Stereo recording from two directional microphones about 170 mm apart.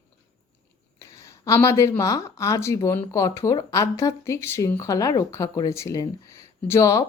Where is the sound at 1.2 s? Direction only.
20° left (ahead or behind).